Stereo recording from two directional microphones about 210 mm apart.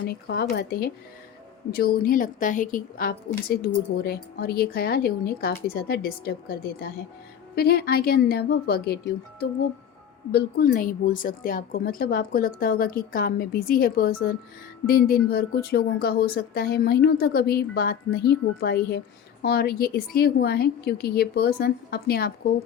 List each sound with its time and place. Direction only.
0.0 s a woman's voice: 50° left (ahead or behind)